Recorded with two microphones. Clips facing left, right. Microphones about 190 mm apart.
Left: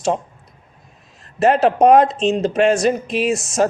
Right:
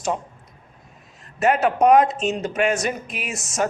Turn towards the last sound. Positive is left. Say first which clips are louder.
# left 8 dB
turn(degrees=30)  # may be behind; listen again after turning